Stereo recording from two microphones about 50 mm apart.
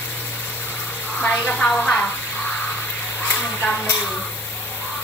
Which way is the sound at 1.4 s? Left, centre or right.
Left.